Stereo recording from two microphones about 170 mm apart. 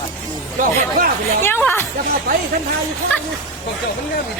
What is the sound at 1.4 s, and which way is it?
Speech, 10° left (ahead or behind).